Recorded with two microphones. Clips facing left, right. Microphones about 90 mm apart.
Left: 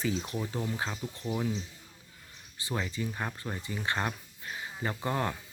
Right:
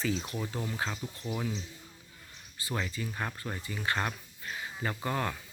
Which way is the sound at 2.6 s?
20° left (ahead or behind).